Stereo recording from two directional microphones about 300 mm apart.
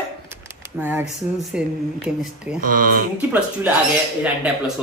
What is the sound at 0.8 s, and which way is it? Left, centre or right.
Speech, centre.